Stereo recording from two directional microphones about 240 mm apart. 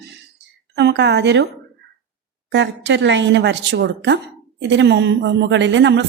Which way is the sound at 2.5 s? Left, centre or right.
Right.